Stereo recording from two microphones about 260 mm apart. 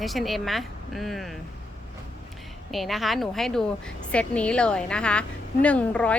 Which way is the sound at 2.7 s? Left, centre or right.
Centre.